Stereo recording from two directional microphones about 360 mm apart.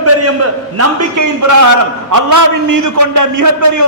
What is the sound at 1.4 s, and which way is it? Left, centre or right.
A man's voice, right.